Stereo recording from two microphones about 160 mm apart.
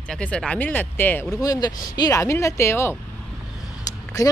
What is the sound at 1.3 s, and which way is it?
Speech, 25° left (ahead or behind).